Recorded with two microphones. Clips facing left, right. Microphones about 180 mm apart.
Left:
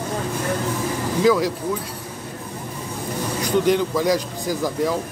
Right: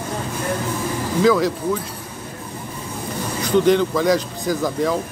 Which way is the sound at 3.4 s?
10° left (ahead or behind).